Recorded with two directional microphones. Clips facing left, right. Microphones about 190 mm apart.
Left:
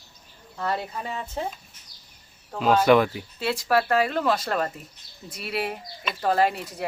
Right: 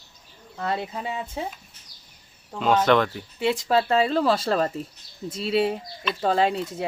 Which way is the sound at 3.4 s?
20° right (ahead or behind).